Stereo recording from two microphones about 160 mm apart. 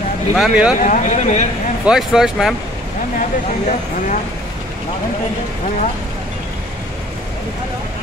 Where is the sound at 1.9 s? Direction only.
5° right (ahead or behind).